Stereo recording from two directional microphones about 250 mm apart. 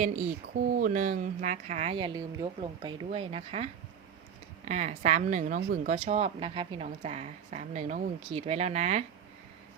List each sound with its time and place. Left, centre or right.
0.6 s speech: right
4.7 s speech: right